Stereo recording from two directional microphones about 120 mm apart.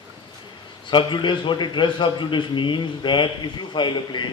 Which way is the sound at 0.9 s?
40° left (ahead or behind).